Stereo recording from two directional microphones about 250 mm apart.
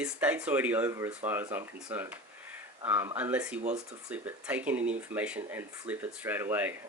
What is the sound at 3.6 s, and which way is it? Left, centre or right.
Speech, right.